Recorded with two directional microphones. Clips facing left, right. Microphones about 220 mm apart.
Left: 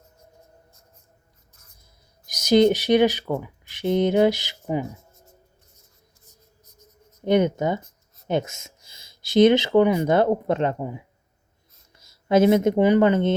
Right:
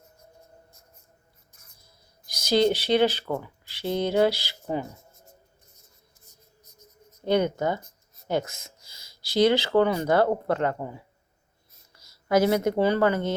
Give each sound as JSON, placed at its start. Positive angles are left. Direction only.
{"t": 2.2, "sound": "speech", "side_deg": 20}
{"t": 7.3, "sound": "speech", "side_deg": 20}